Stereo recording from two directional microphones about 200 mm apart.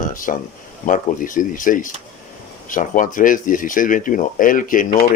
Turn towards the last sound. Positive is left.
turn(degrees=40)  # may be behind; listen again after turning